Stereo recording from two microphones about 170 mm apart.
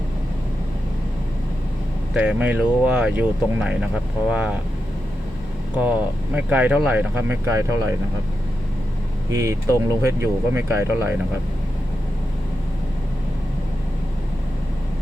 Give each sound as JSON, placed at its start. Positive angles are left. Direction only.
{"t": 2.1, "sound": "speech", "side_deg": -5}
{"t": 6.3, "sound": "speech", "side_deg": -10}
{"t": 9.3, "sound": "speech", "side_deg": -20}